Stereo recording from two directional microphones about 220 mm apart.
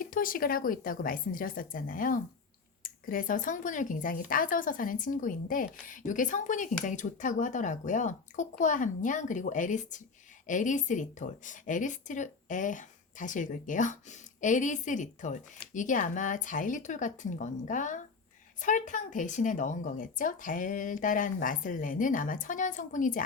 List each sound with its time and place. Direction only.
0.0 s speech: 40° left (ahead or behind)